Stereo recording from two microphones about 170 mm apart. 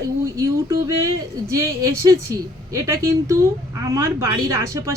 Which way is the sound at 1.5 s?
20° right (ahead or behind).